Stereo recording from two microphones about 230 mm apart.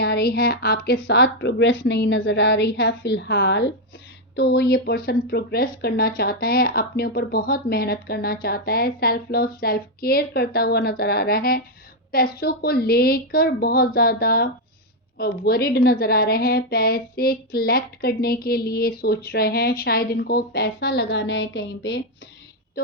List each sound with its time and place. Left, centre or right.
0.0 s a woman's voice: left